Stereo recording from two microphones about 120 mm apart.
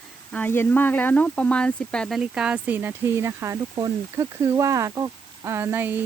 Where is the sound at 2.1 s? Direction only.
5° right (ahead or behind).